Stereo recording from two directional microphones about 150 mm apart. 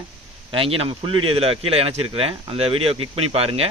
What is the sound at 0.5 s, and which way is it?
Speech, 35° right (ahead or behind).